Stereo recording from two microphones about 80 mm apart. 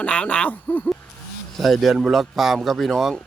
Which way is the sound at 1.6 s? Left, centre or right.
Centre.